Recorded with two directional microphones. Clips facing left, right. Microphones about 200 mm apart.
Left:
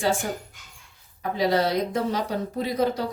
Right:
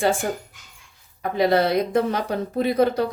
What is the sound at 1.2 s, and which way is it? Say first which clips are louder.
A woman's voice: right 4 dB; 60° right (ahead or behind).